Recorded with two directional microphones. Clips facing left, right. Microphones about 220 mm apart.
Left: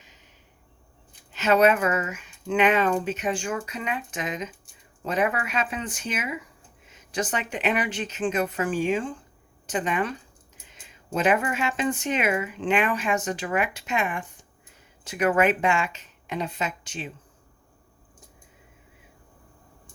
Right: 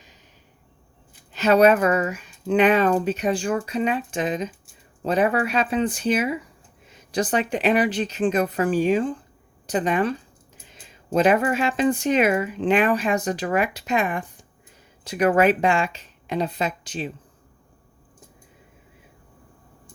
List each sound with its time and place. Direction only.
1.3 s speech: 35° right (ahead or behind)